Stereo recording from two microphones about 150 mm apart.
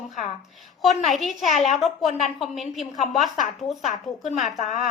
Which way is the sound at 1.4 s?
50° left (ahead or behind).